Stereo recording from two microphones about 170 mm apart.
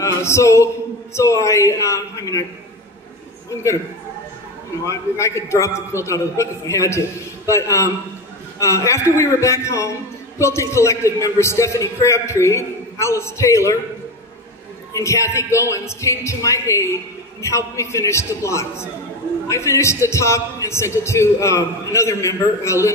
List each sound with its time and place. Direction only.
0.0 s a man's voice: 15° left (ahead or behind)
4.8 s a man's voice: 15° left (ahead or behind)
15.0 s a man's voice: 15° left (ahead or behind)